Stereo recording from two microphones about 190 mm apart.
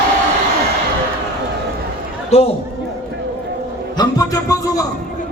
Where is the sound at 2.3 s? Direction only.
35° left (ahead or behind).